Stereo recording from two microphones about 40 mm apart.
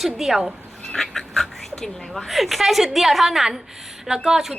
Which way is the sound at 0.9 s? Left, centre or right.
Centre.